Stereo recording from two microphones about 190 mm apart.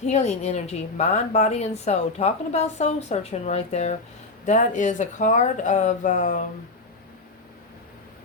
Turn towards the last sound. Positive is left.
turn(degrees=40)  # may be behind; listen again after turning